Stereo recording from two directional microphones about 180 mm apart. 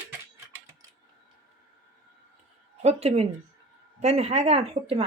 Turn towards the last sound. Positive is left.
turn(degrees=-35)  # may be behind; listen again after turning